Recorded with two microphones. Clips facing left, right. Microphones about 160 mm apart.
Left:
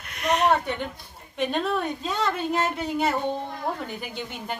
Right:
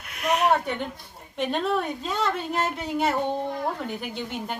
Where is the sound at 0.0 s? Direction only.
5° right (ahead or behind).